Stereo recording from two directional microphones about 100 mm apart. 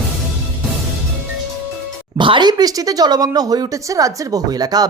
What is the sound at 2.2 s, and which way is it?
A woman's voice, 50° right (ahead or behind).